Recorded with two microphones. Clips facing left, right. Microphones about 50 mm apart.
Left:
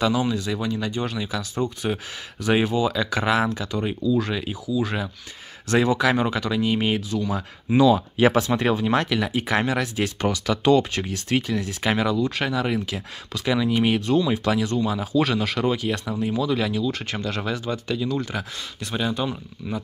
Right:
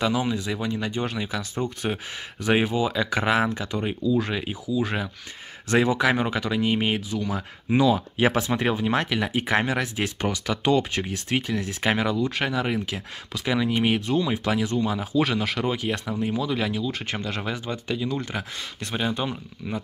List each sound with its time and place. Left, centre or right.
0.0 s speech: centre
18.2 s speech: right